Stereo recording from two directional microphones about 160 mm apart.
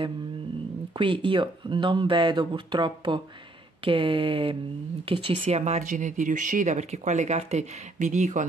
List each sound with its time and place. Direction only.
0.9 s speech: 30° right (ahead or behind); by 8.5 s 50° right (ahead or behind)